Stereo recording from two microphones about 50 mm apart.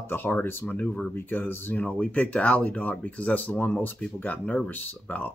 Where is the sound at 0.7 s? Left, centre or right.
Left.